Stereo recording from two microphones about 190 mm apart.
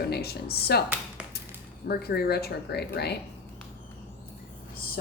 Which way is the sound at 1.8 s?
55° left (ahead or behind).